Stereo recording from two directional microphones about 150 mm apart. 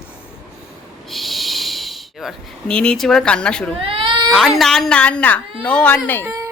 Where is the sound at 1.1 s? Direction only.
Centre (ahead or behind).